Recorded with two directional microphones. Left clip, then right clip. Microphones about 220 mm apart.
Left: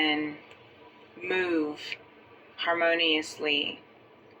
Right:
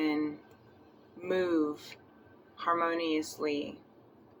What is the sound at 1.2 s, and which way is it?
Speech, 10° right (ahead or behind).